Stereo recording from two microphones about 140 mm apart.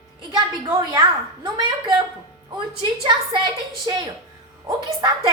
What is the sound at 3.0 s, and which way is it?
A woman's voice, 35° right (ahead or behind).